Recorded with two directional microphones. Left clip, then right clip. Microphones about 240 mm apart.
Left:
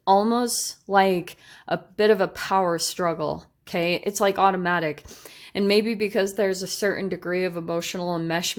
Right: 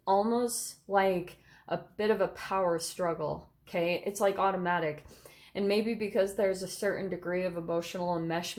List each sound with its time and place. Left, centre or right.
0.0 s speech: left